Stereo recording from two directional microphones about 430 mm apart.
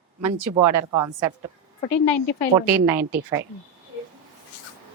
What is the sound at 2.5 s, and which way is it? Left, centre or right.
Speech, centre.